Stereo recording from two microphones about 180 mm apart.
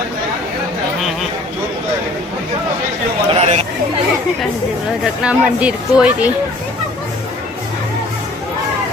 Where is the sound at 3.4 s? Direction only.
35° right (ahead or behind).